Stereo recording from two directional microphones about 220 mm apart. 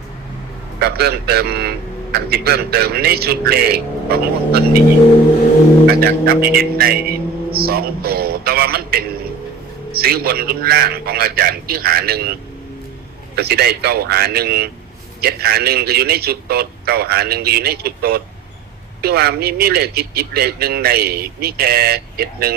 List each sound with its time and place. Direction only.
0.8 s a man's voice: 45° right (ahead or behind)
5.9 s a man's voice: 45° right (ahead or behind)